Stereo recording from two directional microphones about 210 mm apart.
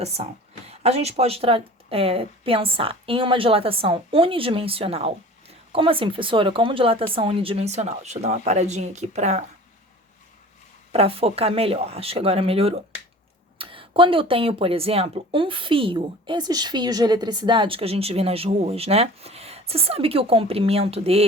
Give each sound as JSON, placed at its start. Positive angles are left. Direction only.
{"t": 0.0, "sound": "speech", "side_deg": -30}
{"t": 10.9, "sound": "speech", "side_deg": -30}